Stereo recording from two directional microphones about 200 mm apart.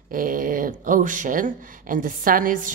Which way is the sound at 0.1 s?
45° right (ahead or behind).